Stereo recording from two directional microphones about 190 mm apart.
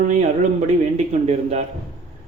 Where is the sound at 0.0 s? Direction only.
40° right (ahead or behind).